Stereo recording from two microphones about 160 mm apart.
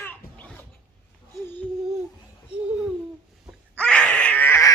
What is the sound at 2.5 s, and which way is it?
Babbling, 5° right (ahead or behind).